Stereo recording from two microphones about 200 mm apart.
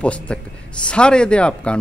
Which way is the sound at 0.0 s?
5° left (ahead or behind).